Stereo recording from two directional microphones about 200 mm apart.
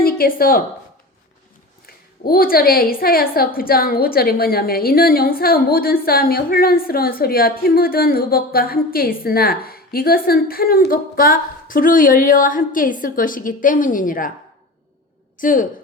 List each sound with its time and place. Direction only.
0.0 s a woman's voice: 45° left (ahead or behind)
1.9 s a woman's voice: 50° left (ahead or behind)
15.4 s a woman's voice: 40° left (ahead or behind)